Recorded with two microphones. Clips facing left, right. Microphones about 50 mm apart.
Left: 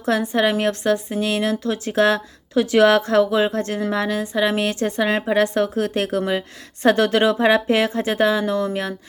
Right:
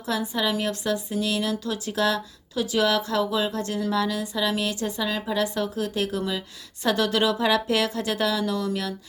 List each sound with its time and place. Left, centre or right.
0.0 s a woman's voice: left